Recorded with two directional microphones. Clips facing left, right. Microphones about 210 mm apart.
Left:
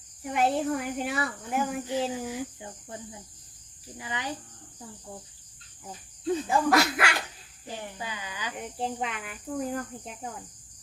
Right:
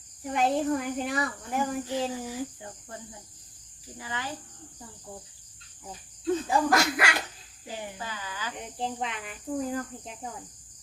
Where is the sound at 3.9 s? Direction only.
15° left (ahead or behind).